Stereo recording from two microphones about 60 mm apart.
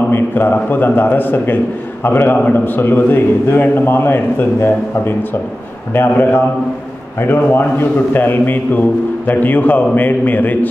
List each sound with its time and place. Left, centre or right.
0.1 s a man's voice: left